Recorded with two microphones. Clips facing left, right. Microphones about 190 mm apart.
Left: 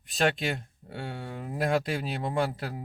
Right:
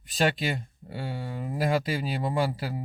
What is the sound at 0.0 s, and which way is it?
Speech, centre (ahead or behind).